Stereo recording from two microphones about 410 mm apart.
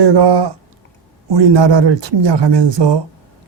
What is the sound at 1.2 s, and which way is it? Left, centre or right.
A man's voice, right.